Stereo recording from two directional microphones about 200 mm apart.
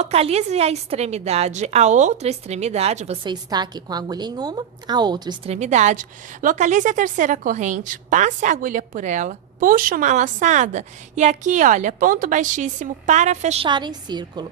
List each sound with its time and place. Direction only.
0.0 s a woman's voice: 30° right (ahead or behind)
3.2 s a woman's voice: 20° right (ahead or behind)
5.5 s a woman's voice: 35° right (ahead or behind)